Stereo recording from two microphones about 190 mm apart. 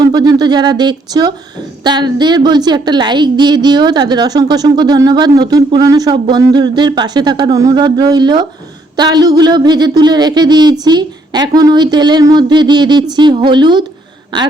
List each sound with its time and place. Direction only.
0.0 s a woman's voice: 20° right (ahead or behind)